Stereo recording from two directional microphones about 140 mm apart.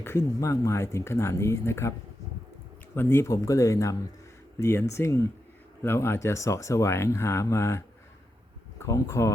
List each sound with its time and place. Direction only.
0.0 s speech: 20° left (ahead or behind)
2.9 s speech: 15° left (ahead or behind)